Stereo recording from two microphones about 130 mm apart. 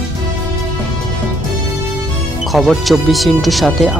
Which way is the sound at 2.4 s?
Centre (ahead or behind).